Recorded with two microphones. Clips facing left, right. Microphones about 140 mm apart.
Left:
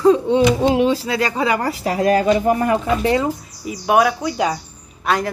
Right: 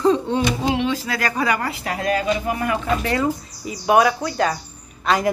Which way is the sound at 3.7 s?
5° left (ahead or behind).